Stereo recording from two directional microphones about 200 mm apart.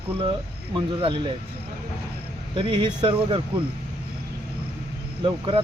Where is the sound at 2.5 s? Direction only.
25° right (ahead or behind).